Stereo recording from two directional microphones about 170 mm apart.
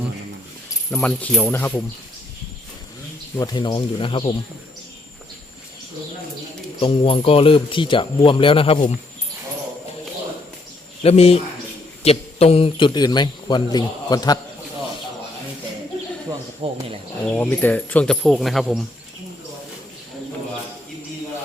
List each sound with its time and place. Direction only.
0.9 s speech: 5° left (ahead or behind)
3.4 s a man's voice: 25° left (ahead or behind)
6.7 s speech: 35° left (ahead or behind)
11.0 s a man's voice: 35° left (ahead or behind)
16.6 s speech: 35° right (ahead or behind)
17.2 s speech: 10° left (ahead or behind)